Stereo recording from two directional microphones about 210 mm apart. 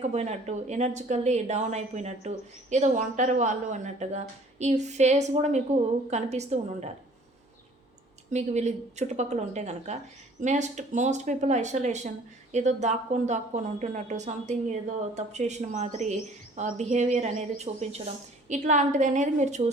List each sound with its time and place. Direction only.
0.0 s speech: 30° right (ahead or behind)
8.3 s speech: 35° right (ahead or behind)